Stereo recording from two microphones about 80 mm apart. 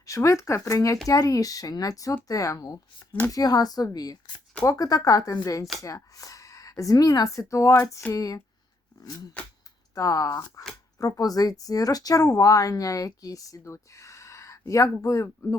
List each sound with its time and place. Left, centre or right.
0.0 s a woman's voice: left